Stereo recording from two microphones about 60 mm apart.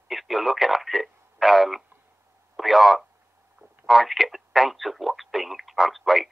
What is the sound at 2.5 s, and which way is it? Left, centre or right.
Speech, centre.